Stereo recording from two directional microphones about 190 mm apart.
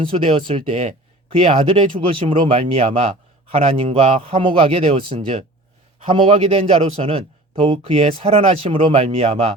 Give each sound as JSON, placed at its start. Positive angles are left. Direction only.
{"t": 0.0, "sound": "a man's voice", "side_deg": -30}